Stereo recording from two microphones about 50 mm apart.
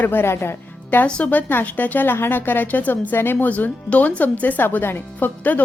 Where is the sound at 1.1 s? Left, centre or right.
Left.